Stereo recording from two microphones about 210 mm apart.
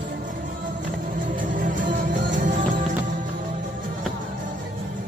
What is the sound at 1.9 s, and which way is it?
Music, 40° right (ahead or behind).